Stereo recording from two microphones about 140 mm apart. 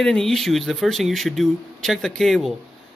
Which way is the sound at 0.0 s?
5° left (ahead or behind).